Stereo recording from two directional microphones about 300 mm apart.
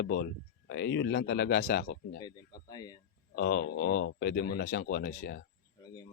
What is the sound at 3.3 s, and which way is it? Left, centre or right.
Speech, left.